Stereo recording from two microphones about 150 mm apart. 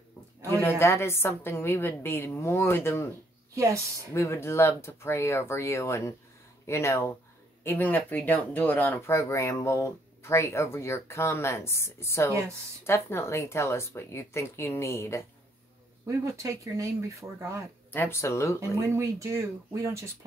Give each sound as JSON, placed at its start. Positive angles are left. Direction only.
{"t": 0.5, "sound": "speech", "side_deg": 20}
{"t": 3.5, "sound": "speech", "side_deg": -20}
{"t": 4.1, "sound": "speech", "side_deg": 20}
{"t": 12.3, "sound": "speech", "side_deg": -20}
{"t": 12.8, "sound": "speech", "side_deg": 15}
{"t": 16.1, "sound": "speech", "side_deg": -20}
{"t": 17.9, "sound": "speech", "side_deg": 15}
{"t": 18.8, "sound": "speech", "side_deg": -20}